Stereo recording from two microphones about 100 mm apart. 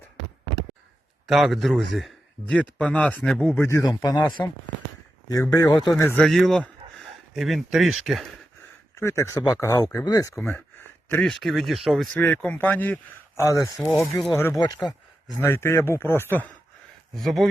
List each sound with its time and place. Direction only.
1.3 s a man's voice: centre (ahead or behind)
2.6 s speech: 10° left (ahead or behind)
3.5 s speech: 25° left (ahead or behind)
3.8 s speech: 40° left (ahead or behind)
6.1 s a man's voice: 5° left (ahead or behind)
9.0 s speech: 25° left (ahead or behind)
11.1 s a man's voice: 5° left (ahead or behind)
12.2 s speech: 15° left (ahead or behind)
13.3 s speech: 30° left (ahead or behind)
15.4 s speech: 25° left (ahead or behind)
17.2 s a man's voice: centre (ahead or behind)